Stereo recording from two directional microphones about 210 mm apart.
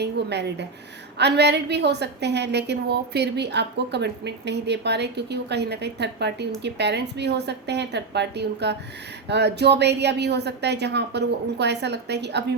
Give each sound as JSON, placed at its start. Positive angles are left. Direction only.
{"t": 0.0, "sound": "a woman's voice", "side_deg": -55}